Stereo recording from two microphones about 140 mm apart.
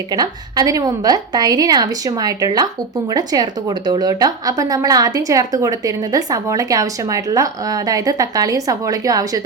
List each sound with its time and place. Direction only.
0.1 s a woman's voice: 25° right (ahead or behind)